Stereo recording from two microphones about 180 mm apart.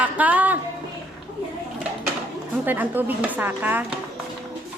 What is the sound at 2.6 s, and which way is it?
A woman's voice, 10° right (ahead or behind).